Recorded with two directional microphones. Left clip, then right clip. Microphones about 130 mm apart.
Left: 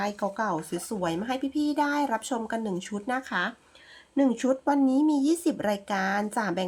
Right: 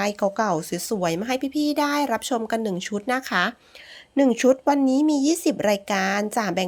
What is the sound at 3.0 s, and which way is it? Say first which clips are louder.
Speech: right 6 dB; 40° right (ahead or behind).